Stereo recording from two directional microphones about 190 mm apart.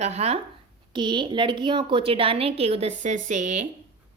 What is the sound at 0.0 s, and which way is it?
A woman's voice, 35° right (ahead or behind).